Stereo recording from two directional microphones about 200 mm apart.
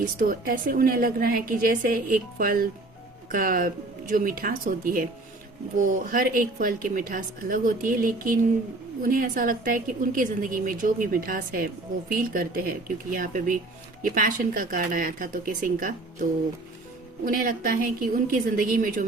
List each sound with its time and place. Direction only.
0.0 s a woman's voice: 45° right (ahead or behind)
17.2 s a woman's voice: 45° right (ahead or behind)